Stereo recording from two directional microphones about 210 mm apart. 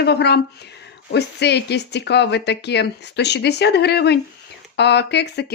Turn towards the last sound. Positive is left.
turn(degrees=55)  # may be behind; listen again after turning